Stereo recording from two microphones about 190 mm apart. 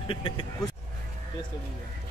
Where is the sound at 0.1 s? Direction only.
25° left (ahead or behind).